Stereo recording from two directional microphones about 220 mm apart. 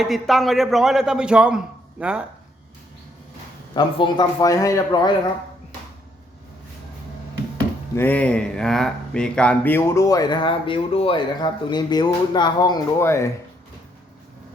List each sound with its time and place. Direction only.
0.0 s a man's voice: centre (ahead or behind)
3.8 s a man's voice: 20° left (ahead or behind)
7.9 s speech: 10° left (ahead or behind)